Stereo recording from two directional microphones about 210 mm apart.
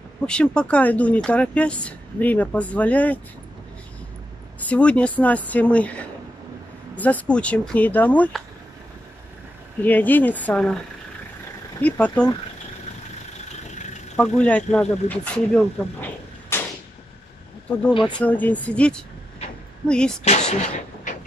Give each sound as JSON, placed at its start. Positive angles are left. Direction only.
{"t": 0.3, "sound": "speech", "side_deg": 5}
{"t": 4.6, "sound": "speech", "side_deg": 5}
{"t": 9.8, "sound": "speech", "side_deg": 10}
{"t": 11.8, "sound": "speech", "side_deg": 5}
{"t": 14.1, "sound": "speech", "side_deg": 5}
{"t": 18.2, "sound": "speech", "side_deg": 5}
{"t": 20.2, "sound": "a sound", "side_deg": 35}